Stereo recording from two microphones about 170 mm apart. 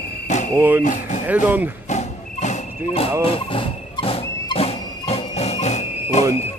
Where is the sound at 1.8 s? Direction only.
45° left (ahead or behind).